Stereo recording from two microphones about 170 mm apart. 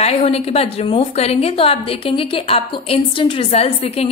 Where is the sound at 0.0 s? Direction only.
40° left (ahead or behind).